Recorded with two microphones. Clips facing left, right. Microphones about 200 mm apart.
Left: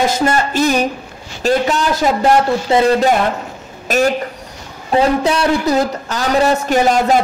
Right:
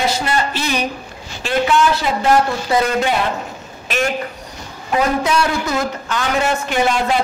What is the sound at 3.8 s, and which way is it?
A man's voice, 40° left (ahead or behind).